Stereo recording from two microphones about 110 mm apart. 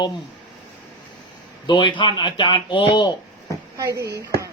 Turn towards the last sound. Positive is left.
turn(degrees=-30)  # may be behind; listen again after turning